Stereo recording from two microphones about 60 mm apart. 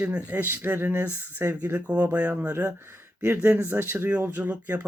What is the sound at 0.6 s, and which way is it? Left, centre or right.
Speech, right.